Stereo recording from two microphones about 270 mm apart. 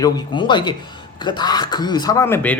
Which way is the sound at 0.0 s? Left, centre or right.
Centre.